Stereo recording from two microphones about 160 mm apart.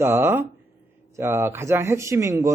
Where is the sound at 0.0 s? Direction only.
15° right (ahead or behind).